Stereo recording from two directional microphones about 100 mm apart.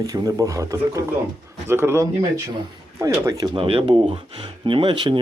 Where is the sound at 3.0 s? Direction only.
35° right (ahead or behind).